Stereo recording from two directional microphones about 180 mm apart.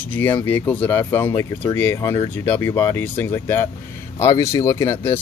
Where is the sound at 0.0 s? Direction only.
10° left (ahead or behind).